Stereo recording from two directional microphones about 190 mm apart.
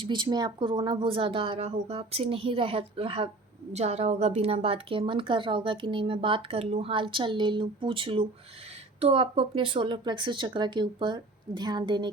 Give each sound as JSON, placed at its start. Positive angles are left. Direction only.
{"t": 0.0, "sound": "a woman's voice", "side_deg": -25}